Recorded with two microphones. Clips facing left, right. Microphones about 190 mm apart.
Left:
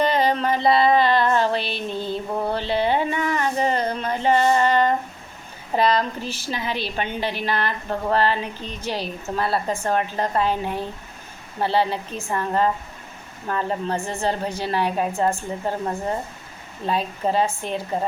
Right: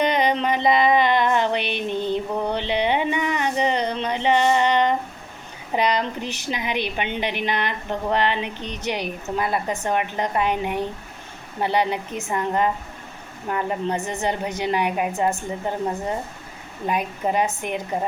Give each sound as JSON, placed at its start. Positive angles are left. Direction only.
{"t": 0.0, "sound": "music", "side_deg": -15}
{"t": 5.7, "sound": "a woman's voice", "side_deg": -15}
{"t": 16.8, "sound": "a woman's voice", "side_deg": -15}